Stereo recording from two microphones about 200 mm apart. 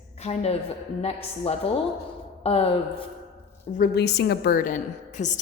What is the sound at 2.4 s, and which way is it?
Speech, 30° left (ahead or behind).